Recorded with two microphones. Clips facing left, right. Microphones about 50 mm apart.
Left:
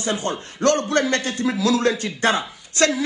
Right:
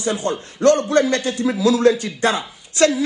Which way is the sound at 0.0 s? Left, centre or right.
Left.